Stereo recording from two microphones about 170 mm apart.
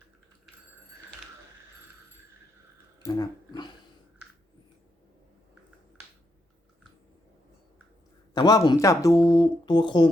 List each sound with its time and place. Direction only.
3.0 s speech: 25° left (ahead or behind)
8.4 s speech: 25° left (ahead or behind)